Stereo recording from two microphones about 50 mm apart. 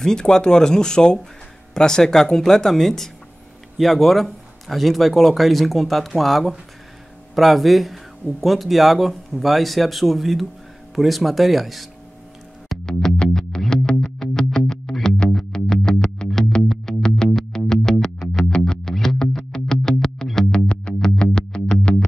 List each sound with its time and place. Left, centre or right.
0.0 s speech: centre
12.8 s music: centre